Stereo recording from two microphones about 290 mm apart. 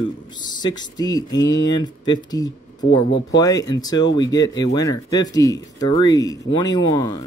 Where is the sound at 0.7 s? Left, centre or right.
Centre.